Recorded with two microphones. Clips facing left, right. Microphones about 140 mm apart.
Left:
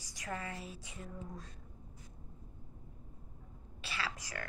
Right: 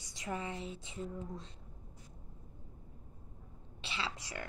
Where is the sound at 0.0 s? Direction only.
25° right (ahead or behind).